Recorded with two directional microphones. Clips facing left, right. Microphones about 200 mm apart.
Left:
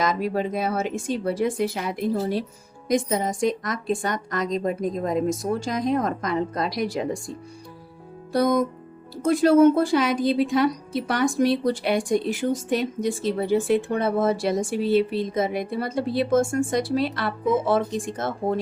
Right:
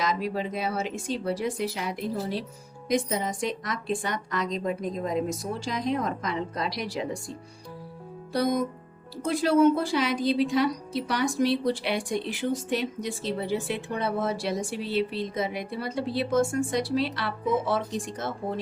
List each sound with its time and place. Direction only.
0.0 s speech: 50° left (ahead or behind)
8.3 s speech: 50° left (ahead or behind)